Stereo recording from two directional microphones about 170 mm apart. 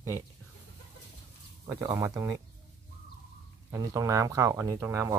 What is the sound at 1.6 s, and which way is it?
Speech, 20° right (ahead or behind).